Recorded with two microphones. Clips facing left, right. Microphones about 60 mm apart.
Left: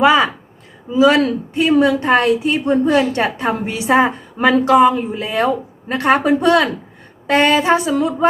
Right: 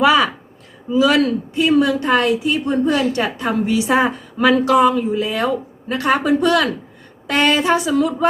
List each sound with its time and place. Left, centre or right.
0.0 s a woman's voice: left